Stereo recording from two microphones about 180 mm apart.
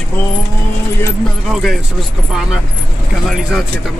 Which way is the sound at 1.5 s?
Centre (ahead or behind).